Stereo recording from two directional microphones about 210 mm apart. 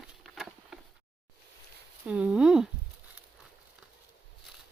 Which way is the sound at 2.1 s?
5° right (ahead or behind).